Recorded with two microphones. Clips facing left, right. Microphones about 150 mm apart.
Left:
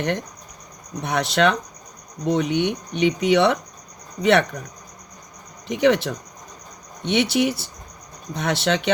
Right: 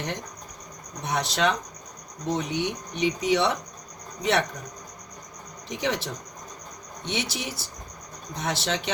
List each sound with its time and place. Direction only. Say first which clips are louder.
1.0 s speech: left 5 dB; 65° left (ahead or behind)
5.6 s speech: left 10 dB; 65° left (ahead or behind)